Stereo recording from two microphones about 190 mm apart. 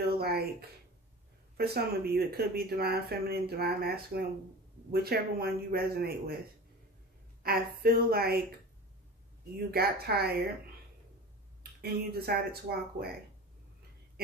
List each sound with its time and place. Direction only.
0.2 s a sound: 55° right (ahead or behind)
1.6 s speech: 55° right (ahead or behind)
7.4 s a woman's voice: 55° right (ahead or behind)
9.7 s speech: 55° right (ahead or behind)
11.8 s speech: 55° right (ahead or behind)